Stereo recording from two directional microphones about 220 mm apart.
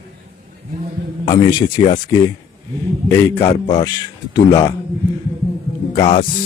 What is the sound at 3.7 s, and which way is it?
Speech, 15° left (ahead or behind).